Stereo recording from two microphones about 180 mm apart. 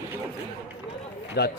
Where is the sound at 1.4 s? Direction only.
65° left (ahead or behind).